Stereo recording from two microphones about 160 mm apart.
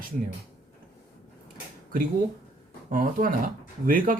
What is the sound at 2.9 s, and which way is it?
Speech, 60° right (ahead or behind).